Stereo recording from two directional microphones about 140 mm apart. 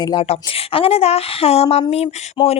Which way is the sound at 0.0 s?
30° left (ahead or behind).